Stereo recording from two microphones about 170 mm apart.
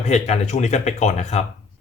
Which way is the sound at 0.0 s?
40° left (ahead or behind).